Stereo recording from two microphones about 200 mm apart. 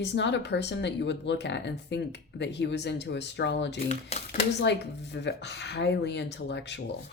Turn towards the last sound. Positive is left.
turn(degrees=60)  # may be behind; listen again after turning